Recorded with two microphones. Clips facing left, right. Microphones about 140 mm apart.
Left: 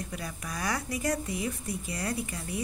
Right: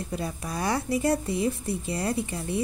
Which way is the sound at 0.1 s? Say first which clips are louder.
Right 6 dB; 30° right (ahead or behind).